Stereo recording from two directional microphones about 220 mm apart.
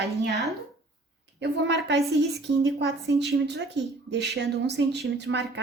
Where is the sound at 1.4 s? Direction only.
50° right (ahead or behind).